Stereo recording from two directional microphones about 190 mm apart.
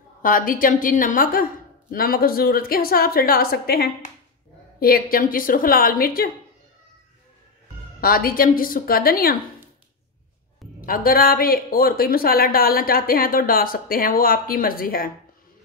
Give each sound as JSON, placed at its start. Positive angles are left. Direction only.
{"t": 0.2, "sound": "speech", "side_deg": 45}
{"t": 8.0, "sound": "speech", "side_deg": 50}
{"t": 10.9, "sound": "speech", "side_deg": 50}